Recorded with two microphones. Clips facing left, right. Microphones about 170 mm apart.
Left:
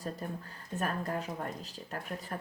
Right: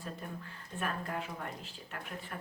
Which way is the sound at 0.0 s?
40° left (ahead or behind).